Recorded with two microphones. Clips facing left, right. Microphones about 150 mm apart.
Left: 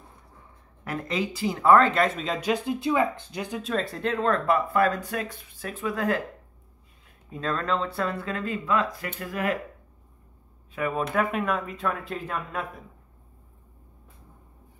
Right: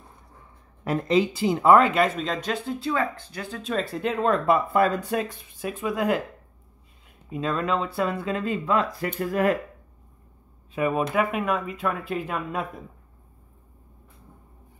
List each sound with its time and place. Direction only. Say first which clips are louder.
0.8 s speech: right 7 dB; 25° right (ahead or behind)
1.8 s speech: right 1 dB; 5° right (ahead or behind); by 3.6 s 15° left (ahead or behind)
3.6 s speech: right 3 dB; 5° right (ahead or behind)
4.7 s speech: right 2 dB; 25° right (ahead or behind)
7.2 s speech: right 2 dB; 10° right (ahead or behind); by 9.6 s 35° right (ahead or behind)
10.7 s speech: right 3 dB; 15° right (ahead or behind)